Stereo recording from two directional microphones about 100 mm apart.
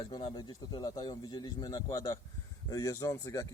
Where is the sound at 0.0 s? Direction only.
55° left (ahead or behind).